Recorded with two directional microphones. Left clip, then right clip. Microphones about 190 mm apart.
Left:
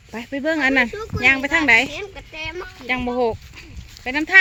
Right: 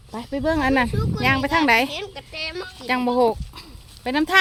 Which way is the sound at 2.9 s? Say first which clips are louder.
Right 2 dB; 10° right (ahead or behind).